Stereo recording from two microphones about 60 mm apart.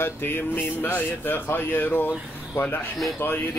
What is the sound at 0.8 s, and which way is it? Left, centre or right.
Speech, left.